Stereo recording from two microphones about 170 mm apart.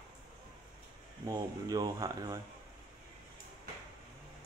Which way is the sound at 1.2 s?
20° right (ahead or behind).